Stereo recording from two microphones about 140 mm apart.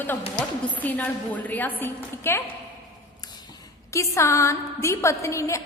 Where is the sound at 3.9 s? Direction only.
20° left (ahead or behind).